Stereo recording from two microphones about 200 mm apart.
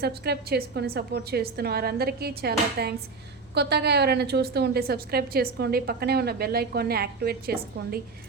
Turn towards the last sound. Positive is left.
turn(degrees=-50)  # may be behind; listen again after turning